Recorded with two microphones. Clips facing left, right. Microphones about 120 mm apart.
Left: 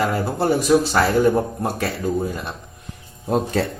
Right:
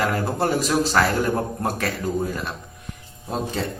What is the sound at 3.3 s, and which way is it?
Speech, 60° left (ahead or behind).